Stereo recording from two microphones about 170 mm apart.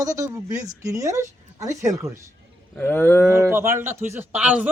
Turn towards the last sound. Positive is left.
turn(degrees=-10)  # may be behind; listen again after turning